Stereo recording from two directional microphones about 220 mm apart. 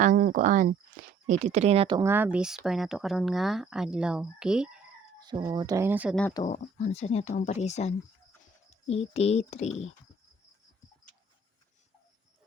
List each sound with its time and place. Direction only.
0.0 s speech: 40° right (ahead or behind)
1.0 s a sound: 35° right (ahead or behind)
1.3 s speech: 35° right (ahead or behind)
2.0 s speech: 10° right (ahead or behind)
5.2 s speech: 20° right (ahead or behind)
6.4 s a child's voice: 30° left (ahead or behind)